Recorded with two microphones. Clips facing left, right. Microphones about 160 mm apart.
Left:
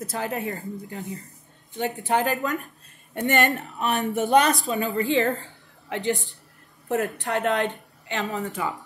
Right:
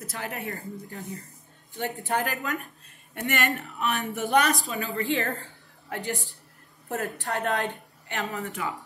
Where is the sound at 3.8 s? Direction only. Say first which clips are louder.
Left 4 dB; 40° left (ahead or behind).